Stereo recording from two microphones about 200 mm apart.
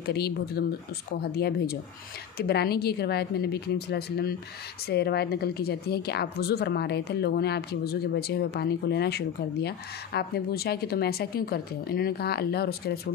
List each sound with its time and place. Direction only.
0.0 s a woman's voice: 50° left (ahead or behind)